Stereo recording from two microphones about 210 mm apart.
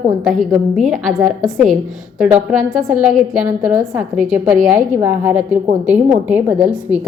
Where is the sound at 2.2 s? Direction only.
5° right (ahead or behind).